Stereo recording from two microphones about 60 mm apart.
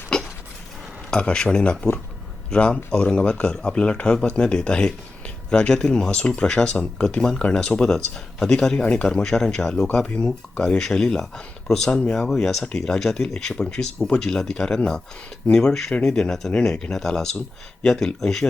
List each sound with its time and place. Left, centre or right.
0.1 s a sound: centre
1.1 s speech: centre
12.3 s speech: centre